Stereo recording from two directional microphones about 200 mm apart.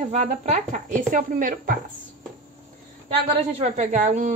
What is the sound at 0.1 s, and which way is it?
Speech, 35° right (ahead or behind).